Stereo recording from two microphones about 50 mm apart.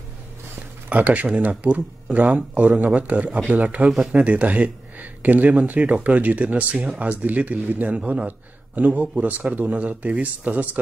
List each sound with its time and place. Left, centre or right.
0.8 s a man's voice: right